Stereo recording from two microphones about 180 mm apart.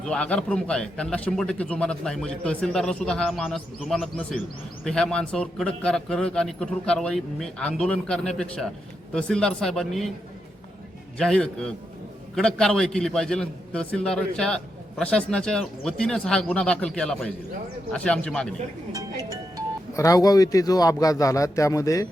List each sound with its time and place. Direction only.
0.0 s a man's voice: 5° left (ahead or behind)
11.2 s a man's voice: 5° left (ahead or behind)
18.9 s speech: 20° right (ahead or behind)
20.0 s speech: 20° left (ahead or behind)